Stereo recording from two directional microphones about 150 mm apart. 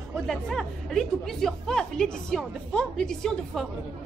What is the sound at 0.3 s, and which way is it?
Speech, centre (ahead or behind).